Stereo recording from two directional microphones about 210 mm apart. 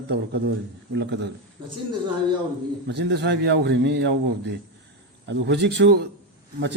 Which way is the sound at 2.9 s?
55° right (ahead or behind).